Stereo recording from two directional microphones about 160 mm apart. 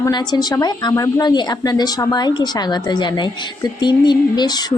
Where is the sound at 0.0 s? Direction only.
25° left (ahead or behind).